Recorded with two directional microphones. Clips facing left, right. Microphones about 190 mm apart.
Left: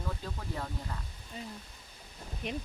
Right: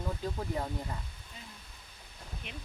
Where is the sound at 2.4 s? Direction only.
40° left (ahead or behind).